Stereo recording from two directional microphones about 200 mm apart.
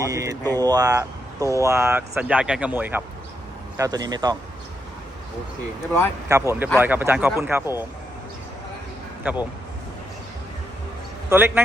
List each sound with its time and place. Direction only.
0.0 s a man's voice: 15° right (ahead or behind)
6.2 s speech: 15° right (ahead or behind)
9.2 s speech: 10° right (ahead or behind)
11.3 s speech: 10° right (ahead or behind)